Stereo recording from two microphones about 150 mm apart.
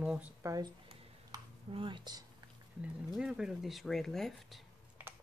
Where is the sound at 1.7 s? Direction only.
35° right (ahead or behind).